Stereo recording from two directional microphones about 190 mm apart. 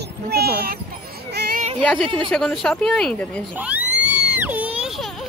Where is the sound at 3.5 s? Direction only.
10° right (ahead or behind).